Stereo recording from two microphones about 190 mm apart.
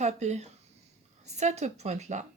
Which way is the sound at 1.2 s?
35° right (ahead or behind).